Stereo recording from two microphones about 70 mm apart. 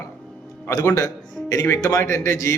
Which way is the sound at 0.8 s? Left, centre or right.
Left.